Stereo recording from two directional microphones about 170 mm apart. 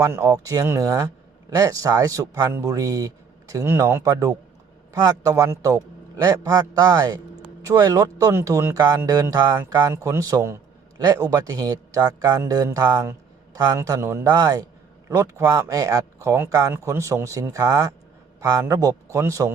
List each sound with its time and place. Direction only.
0.0 s a man's voice: 15° right (ahead or behind)